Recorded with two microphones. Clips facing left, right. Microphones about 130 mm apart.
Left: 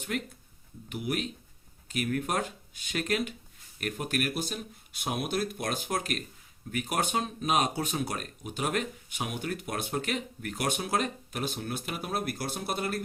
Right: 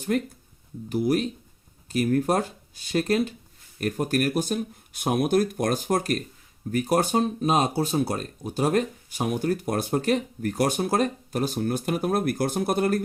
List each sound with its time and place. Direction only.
0.1 s speech: 40° right (ahead or behind)